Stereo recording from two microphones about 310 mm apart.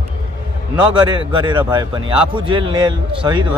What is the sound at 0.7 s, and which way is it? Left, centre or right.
A man's voice, centre.